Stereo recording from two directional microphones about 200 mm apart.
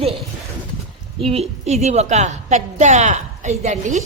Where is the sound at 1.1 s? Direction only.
30° right (ahead or behind).